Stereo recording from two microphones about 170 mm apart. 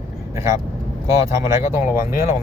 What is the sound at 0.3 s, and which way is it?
Speech, 15° right (ahead or behind).